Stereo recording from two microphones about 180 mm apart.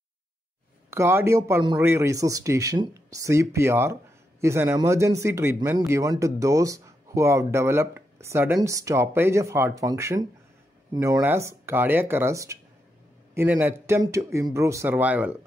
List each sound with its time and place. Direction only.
0.8 s speech: 15° right (ahead or behind)